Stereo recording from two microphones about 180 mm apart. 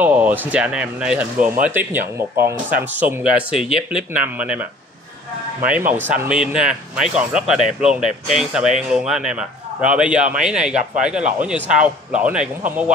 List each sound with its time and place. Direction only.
0.0 s speech: 10° right (ahead or behind)
5.7 s a man's voice: 10° right (ahead or behind)